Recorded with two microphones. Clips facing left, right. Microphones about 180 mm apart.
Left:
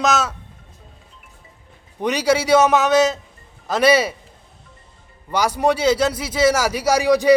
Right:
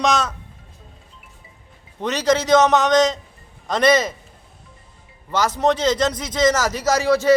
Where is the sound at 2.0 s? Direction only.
10° left (ahead or behind).